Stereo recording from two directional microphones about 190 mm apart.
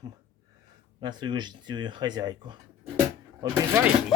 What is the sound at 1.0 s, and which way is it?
Speech, 25° right (ahead or behind).